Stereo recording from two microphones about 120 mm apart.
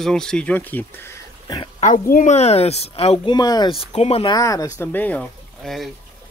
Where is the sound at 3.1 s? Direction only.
40° left (ahead or behind).